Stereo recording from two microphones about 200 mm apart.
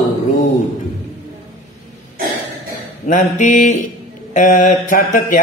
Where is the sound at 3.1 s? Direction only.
40° left (ahead or behind).